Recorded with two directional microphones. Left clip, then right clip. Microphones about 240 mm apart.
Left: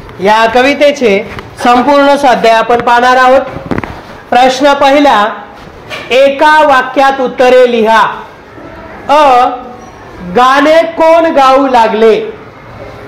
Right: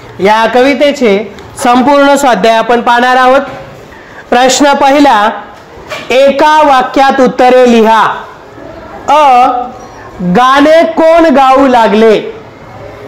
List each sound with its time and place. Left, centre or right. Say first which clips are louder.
0.2 s a woman's voice: even; right
4.3 s speech: even; right
9.0 s a woman's voice: right 1 dB; right